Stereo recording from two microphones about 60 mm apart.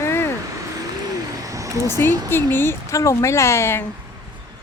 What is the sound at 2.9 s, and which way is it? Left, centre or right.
Speech, left.